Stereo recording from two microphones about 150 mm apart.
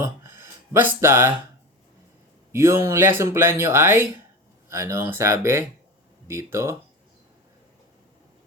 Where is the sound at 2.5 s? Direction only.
15° right (ahead or behind).